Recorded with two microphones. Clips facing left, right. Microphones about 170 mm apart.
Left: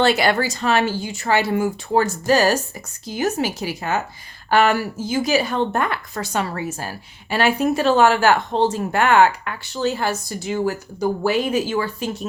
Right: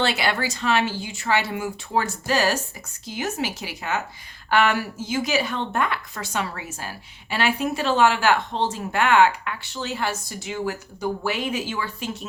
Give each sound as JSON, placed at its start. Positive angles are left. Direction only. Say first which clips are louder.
{"t": 0.0, "sound": "speech", "louder": "left 6 dB", "side_deg": 45}